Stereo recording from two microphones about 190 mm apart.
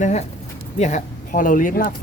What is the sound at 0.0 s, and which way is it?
Speech, 35° left (ahead or behind).